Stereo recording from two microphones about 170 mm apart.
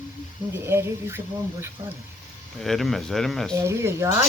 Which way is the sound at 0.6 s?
15° right (ahead or behind).